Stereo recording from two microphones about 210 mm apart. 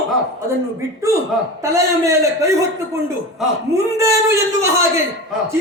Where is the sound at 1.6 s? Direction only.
15° right (ahead or behind).